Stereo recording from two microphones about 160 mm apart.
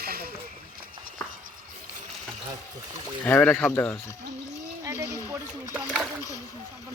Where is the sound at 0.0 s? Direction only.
70° right (ahead or behind).